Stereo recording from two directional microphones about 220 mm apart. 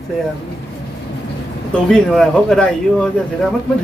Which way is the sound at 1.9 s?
5° left (ahead or behind).